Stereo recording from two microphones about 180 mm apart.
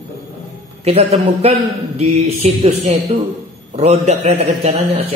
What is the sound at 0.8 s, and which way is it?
A man's voice, 35° right (ahead or behind).